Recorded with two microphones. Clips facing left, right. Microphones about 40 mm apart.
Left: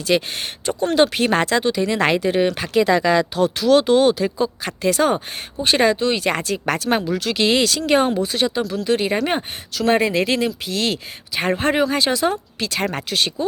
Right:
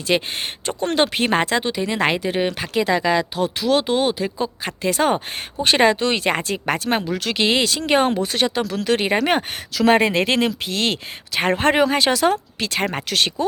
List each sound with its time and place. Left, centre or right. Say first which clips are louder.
0.1 s speech: left 1 dB; right
0.7 s speech: left 3 dB; right
1.0 s speech: left 1 dB; right
5.0 s speech: even; right
5.6 s speech: right 1 dB; right
6.2 s speech: even; right
7.0 s speech: left 1 dB; right
7.4 s speech: left 1 dB; right
7.9 s speech: even; right
8.2 s speech: even; right
9.0 s speech: right 2 dB; right
12.8 s speech: left 1 dB; right
13.1 s speech: right 1 dB; right